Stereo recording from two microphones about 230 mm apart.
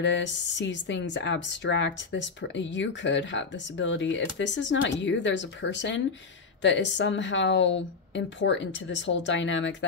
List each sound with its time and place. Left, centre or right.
0.0 s speech: left